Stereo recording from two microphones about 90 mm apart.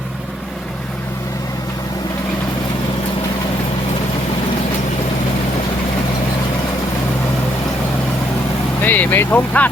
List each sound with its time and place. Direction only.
8.8 s speech: 20° left (ahead or behind)